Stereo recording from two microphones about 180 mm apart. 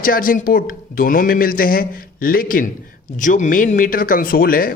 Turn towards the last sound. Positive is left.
turn(degrees=55)  # may be behind; listen again after turning